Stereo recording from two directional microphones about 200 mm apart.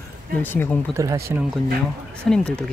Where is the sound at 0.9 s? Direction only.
15° right (ahead or behind).